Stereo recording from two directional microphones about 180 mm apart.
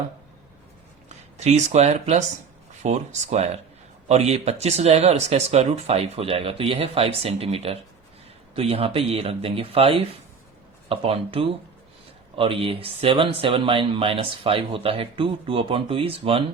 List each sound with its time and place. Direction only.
1.0 s speech: 35° right (ahead or behind)